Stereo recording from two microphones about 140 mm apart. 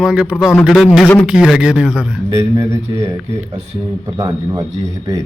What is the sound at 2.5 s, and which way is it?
Speech, 20° right (ahead or behind).